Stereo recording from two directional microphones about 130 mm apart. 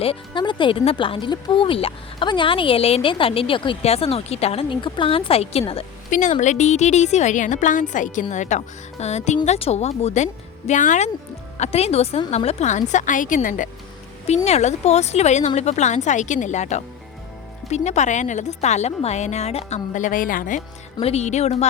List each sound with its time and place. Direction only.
0.0 s speech: 40° left (ahead or behind)
6.1 s a woman's voice: 75° left (ahead or behind)
10.7 s speech: 70° left (ahead or behind)
11.5 s a woman's voice: 55° left (ahead or behind)
12.9 s a woman's voice: 75° left (ahead or behind)
14.3 s a woman's voice: 55° left (ahead or behind)
19.9 s a woman's voice: 85° left
21.0 s a woman's voice: 55° left (ahead or behind)